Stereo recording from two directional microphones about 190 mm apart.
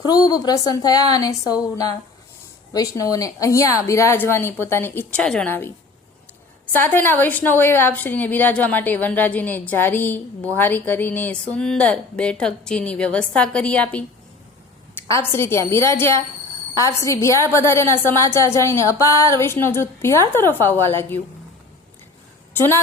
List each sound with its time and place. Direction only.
0.0 s a woman's voice: 20° left (ahead or behind)
6.7 s a woman's voice: 10° left (ahead or behind)
15.1 s a woman's voice: 15° left (ahead or behind)
22.5 s a woman's voice: 10° left (ahead or behind)